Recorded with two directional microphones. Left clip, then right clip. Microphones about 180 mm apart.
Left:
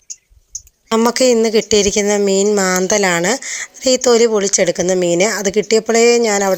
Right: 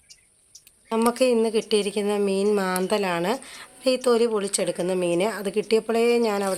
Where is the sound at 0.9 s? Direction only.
40° left (ahead or behind).